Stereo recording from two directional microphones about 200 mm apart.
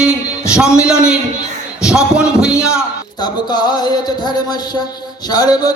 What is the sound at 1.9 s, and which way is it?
Speech, 5° right (ahead or behind).